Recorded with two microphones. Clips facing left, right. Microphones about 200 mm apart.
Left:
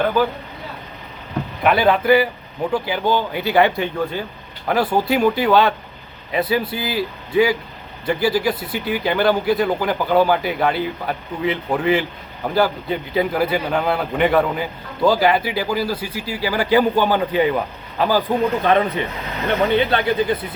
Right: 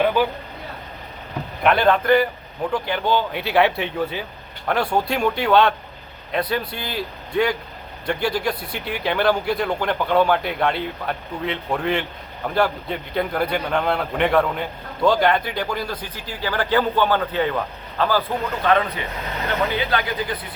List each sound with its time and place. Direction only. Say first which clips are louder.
1.6 s a man's voice: left 1 dB; 5° left (ahead or behind); by 20.5 s 25° left (ahead or behind)